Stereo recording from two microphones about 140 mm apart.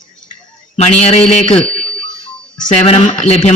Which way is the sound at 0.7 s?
50° left (ahead or behind).